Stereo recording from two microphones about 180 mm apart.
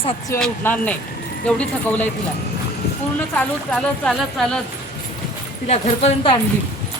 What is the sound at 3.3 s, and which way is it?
Speech, 5° left (ahead or behind).